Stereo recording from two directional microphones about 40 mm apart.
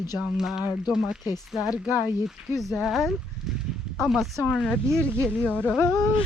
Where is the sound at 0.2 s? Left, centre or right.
Centre.